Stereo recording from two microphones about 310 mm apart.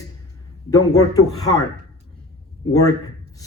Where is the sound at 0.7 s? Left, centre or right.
Centre.